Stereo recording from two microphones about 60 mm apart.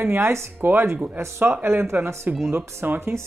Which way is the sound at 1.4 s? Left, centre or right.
Right.